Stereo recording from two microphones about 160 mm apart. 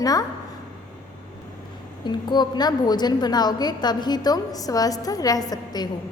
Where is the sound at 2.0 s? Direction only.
30° left (ahead or behind).